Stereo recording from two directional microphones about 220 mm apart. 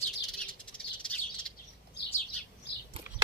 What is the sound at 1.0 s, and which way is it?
Chirp, 5° left (ahead or behind).